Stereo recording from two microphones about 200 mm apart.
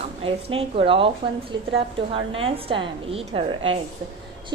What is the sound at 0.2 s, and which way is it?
A woman's voice, 30° right (ahead or behind).